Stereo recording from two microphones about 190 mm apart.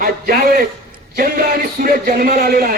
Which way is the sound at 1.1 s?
50° right (ahead or behind).